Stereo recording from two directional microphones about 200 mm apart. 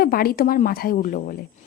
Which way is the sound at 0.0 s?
50° left (ahead or behind).